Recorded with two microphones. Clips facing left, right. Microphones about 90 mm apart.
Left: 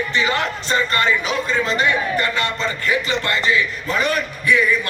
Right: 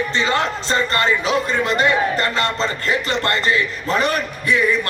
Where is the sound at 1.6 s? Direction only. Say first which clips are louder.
Right 2 dB; 65° right (ahead or behind).